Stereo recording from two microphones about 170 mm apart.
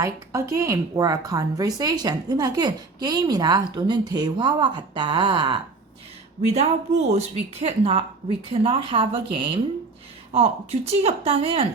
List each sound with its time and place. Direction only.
0.0 s speech: 20° right (ahead or behind)
6.5 s speech: 40° right (ahead or behind)